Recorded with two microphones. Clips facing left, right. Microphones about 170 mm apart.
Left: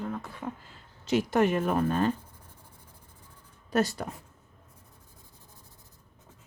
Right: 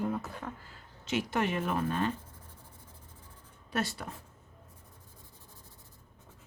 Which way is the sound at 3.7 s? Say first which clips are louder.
Left 7 dB; 40° left (ahead or behind).